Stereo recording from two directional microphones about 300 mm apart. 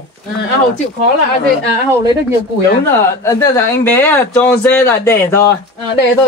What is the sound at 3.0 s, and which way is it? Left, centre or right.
Speech, centre.